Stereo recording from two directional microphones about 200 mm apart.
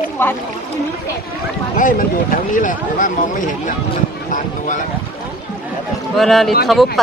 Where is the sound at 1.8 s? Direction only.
40° left (ahead or behind).